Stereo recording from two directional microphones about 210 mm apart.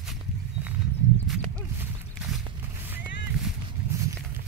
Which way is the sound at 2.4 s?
10° right (ahead or behind).